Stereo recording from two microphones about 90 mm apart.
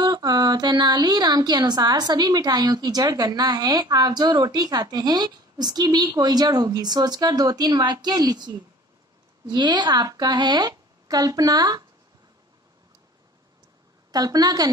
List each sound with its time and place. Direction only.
0.0 s a woman's voice: 50° right (ahead or behind)
14.1 s a woman's voice: 45° right (ahead or behind)